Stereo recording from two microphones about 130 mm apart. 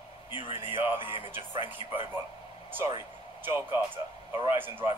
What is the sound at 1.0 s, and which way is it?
A man's voice, 40° left (ahead or behind).